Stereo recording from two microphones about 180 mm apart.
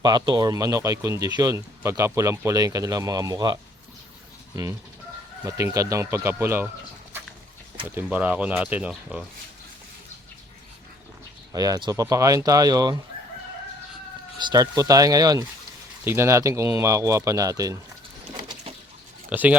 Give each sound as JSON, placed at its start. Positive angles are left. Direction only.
{"t": 0.0, "sound": "speech", "side_deg": -25}
{"t": 5.4, "sound": "speech", "side_deg": -15}
{"t": 7.9, "sound": "speech", "side_deg": -10}
{"t": 11.5, "sound": "speech", "side_deg": -20}
{"t": 14.3, "sound": "speech", "side_deg": -25}
{"t": 19.3, "sound": "speech", "side_deg": -10}